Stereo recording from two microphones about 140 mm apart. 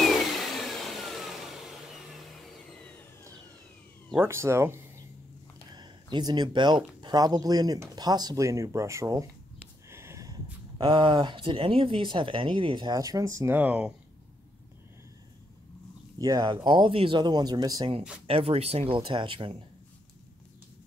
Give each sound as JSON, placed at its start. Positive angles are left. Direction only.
{"t": 0.0, "sound": "vacuum cleaner", "side_deg": 0}
{"t": 4.2, "sound": "speech", "side_deg": -20}
{"t": 5.7, "sound": "speech", "side_deg": -30}
{"t": 16.2, "sound": "speech", "side_deg": -30}
{"t": 18.2, "sound": "speech", "side_deg": -45}